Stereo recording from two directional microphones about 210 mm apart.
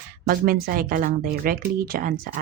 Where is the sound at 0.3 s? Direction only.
45° right (ahead or behind).